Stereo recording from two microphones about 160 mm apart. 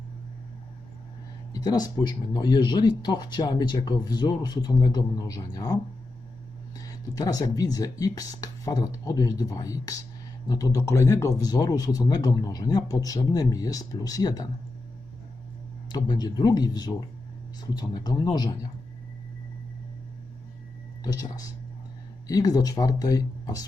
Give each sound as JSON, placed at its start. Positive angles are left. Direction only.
{"t": 1.5, "sound": "speech", "side_deg": 25}
{"t": 15.9, "sound": "speech", "side_deg": 25}
{"t": 21.0, "sound": "speech", "side_deg": 25}